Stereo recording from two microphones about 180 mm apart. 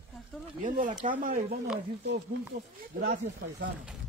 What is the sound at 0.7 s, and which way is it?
Speech, 45° right (ahead or behind).